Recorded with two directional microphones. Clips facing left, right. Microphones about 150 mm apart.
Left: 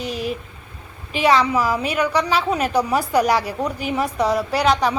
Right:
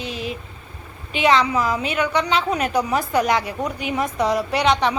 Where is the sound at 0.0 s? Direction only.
40° left (ahead or behind).